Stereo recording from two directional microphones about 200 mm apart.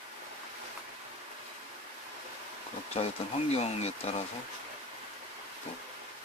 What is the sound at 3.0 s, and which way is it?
Speech, 30° left (ahead or behind).